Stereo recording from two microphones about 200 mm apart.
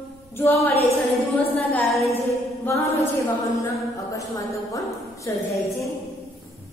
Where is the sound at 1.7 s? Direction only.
5° left (ahead or behind).